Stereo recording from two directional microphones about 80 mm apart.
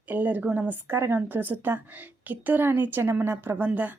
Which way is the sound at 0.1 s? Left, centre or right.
Right.